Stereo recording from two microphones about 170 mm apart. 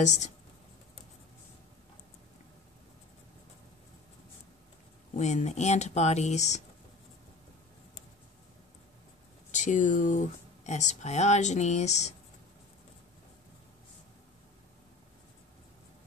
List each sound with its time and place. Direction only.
0.0 s speech: 45° left (ahead or behind)
5.1 s speech: 40° left (ahead or behind)
9.5 s speech: 45° left (ahead or behind)